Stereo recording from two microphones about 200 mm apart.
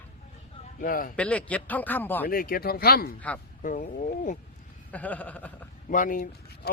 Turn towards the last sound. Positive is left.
turn(degrees=45)  # may be behind; listen again after turning